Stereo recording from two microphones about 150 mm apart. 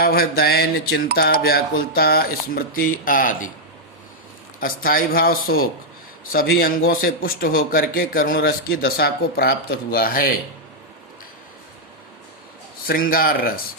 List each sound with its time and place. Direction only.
0.0 s speech: 90° left; by 3.5 s 65° left (ahead or behind)
4.6 s a man's voice: 70° left (ahead or behind)
12.9 s a man's voice: 70° left (ahead or behind)